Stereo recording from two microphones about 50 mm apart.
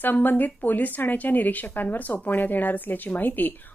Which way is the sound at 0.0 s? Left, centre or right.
Left.